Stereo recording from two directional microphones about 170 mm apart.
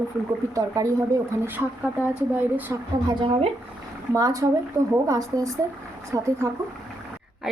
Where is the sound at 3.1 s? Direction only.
30° right (ahead or behind).